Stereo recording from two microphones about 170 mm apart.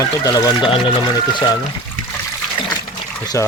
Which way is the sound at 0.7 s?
30° left (ahead or behind).